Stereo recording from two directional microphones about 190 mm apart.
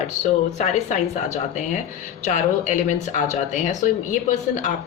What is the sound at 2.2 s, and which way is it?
A woman's voice, 40° left (ahead or behind).